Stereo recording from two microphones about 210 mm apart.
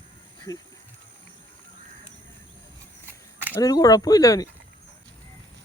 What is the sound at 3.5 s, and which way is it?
Speech, 15° left (ahead or behind).